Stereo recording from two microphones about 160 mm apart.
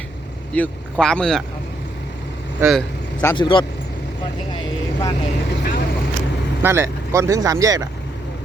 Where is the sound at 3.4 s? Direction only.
30° left (ahead or behind).